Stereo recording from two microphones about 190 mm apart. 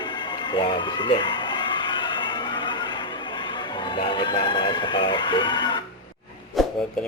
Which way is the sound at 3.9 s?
25° left (ahead or behind).